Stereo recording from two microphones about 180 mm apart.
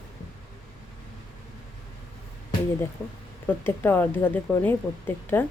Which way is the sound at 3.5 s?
10° left (ahead or behind).